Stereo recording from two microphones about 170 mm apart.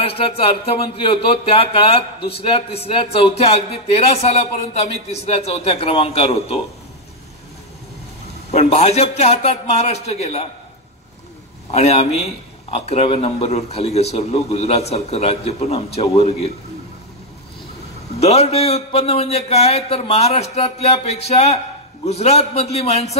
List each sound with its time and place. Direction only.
0.0 s a man's voice: 35° left (ahead or behind)
8.5 s a man's voice: 35° left (ahead or behind)
11.7 s a man's voice: 40° left (ahead or behind)
18.2 s a man's voice: 40° left (ahead or behind)